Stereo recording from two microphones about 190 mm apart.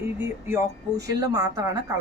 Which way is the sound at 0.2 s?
15° right (ahead or behind).